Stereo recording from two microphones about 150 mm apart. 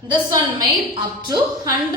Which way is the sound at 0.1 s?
25° right (ahead or behind).